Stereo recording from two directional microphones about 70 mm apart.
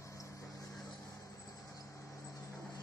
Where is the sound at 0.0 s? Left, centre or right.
Left.